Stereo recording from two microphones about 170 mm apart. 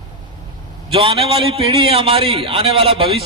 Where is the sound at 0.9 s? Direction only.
35° right (ahead or behind).